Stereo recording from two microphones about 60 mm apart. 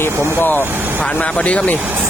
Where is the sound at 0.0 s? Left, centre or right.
Left.